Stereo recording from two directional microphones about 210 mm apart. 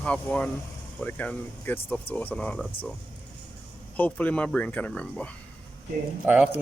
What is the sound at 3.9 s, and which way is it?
Speech, 5° left (ahead or behind).